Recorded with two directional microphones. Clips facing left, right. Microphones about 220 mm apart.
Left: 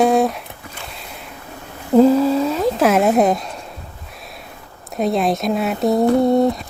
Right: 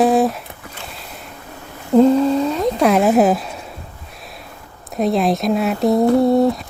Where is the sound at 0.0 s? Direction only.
Centre (ahead or behind).